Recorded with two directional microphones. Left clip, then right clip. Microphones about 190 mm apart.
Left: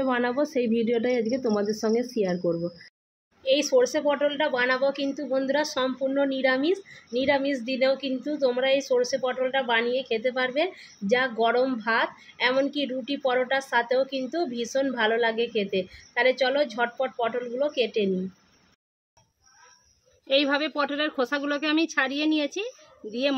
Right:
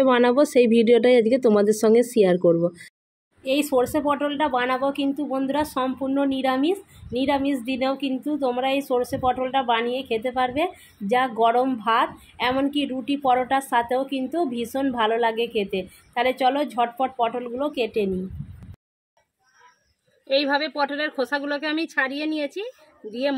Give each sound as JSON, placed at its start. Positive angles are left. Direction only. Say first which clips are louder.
{"t": 0.0, "sound": "speech", "louder": "right 8 dB", "side_deg": -45}
{"t": 3.8, "sound": "a woman's voice", "louder": "even", "side_deg": -15}
{"t": 20.2, "sound": "a woman's voice", "louder": "right 2 dB", "side_deg": 0}